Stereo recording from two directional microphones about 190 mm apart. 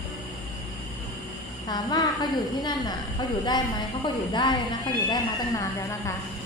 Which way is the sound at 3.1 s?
20° left (ahead or behind).